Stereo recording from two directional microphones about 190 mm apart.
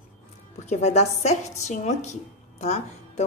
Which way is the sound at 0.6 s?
35° left (ahead or behind).